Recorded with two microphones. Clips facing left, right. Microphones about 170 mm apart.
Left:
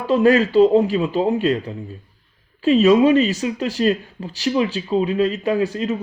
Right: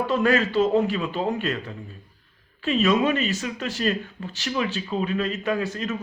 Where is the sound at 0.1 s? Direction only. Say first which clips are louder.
Left 9 dB; 35° left (ahead or behind).